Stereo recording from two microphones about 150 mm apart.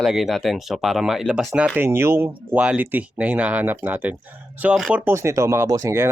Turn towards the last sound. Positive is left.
turn(degrees=-20)  # may be behind; listen again after turning